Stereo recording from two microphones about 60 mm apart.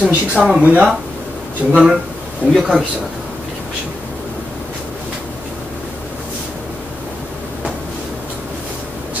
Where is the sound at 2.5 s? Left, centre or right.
Centre.